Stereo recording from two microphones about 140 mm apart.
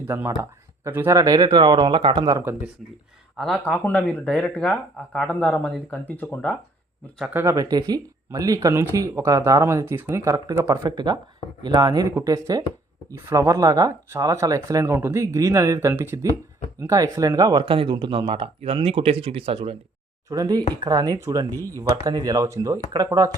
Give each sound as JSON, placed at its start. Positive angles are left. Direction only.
{"t": 0.1, "sound": "speech", "side_deg": -20}
{"t": 3.3, "sound": "speech", "side_deg": 5}
{"t": 7.3, "sound": "speech", "side_deg": -20}
{"t": 20.3, "sound": "speech", "side_deg": -25}
{"t": 21.5, "sound": "speech", "side_deg": 15}
{"t": 21.8, "sound": "speech", "side_deg": -25}